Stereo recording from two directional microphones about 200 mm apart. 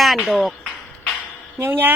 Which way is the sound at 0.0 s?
Centre (ahead or behind).